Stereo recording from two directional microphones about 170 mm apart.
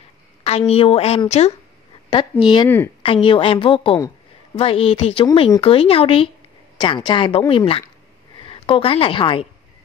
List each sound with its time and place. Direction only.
0.4 s a woman's voice: 35° left (ahead or behind)
2.4 s a woman's voice: 25° left (ahead or behind)